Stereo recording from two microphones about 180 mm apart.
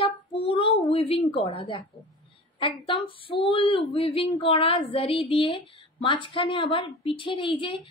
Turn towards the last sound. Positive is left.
turn(degrees=30)  # may be behind; listen again after turning